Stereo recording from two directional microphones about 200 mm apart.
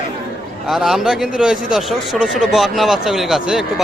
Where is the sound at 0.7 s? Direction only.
Centre (ahead or behind).